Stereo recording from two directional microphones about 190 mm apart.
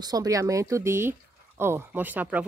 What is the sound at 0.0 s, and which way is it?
A woman's voice, 20° right (ahead or behind).